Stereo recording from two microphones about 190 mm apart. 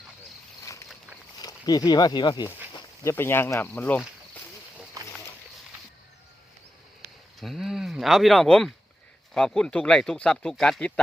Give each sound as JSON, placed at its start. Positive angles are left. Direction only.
{"t": 0.6, "sound": "a sound", "side_deg": 15}
{"t": 1.4, "sound": "speech", "side_deg": 20}
{"t": 7.3, "sound": "speech", "side_deg": 0}